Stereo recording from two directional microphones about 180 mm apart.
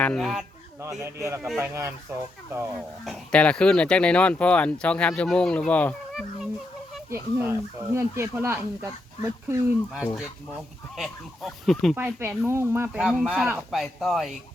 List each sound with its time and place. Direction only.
0.0 s speech: centre (ahead or behind)
0.8 s speech: 15° right (ahead or behind)
3.0 s speech: 5° left (ahead or behind)
7.1 s speech: 15° right (ahead or behind)
10.9 s speech: centre (ahead or behind)
11.9 s speech: 10° right (ahead or behind)